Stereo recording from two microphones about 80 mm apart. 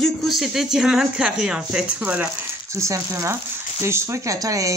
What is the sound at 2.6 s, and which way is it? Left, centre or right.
Speech, right.